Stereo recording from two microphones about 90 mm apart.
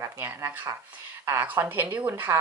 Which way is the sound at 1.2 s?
25° right (ahead or behind).